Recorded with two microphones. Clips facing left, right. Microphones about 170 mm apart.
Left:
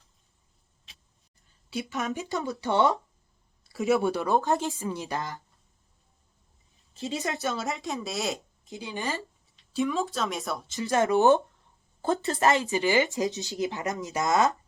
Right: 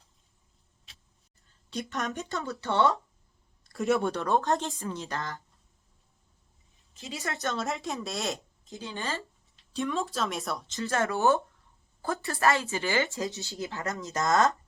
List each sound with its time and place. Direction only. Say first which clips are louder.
1.7 s speech: left 2 dB; 5° left (ahead or behind)
2.3 s speech: left 3 dB; 15° left (ahead or behind)
3.6 s speech: left 2 dB; centre (ahead or behind)
7.1 s a woman's voice: left 4 dB; 20° left (ahead or behind)
7.4 s speech: left 1 dB; centre (ahead or behind)
8.7 s speech: left 2 dB; 15° left (ahead or behind)
9.6 s speech: left 3 dB; centre (ahead or behind)
10.8 s speech: left 6 dB; 15° left (ahead or behind)